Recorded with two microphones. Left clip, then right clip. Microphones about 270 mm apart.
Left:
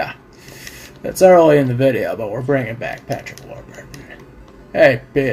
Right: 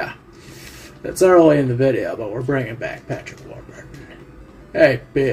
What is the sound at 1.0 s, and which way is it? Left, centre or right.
Speech, left.